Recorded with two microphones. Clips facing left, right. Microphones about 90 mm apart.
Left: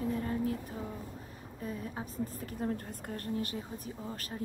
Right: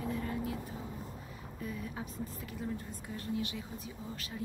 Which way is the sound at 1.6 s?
35° left (ahead or behind).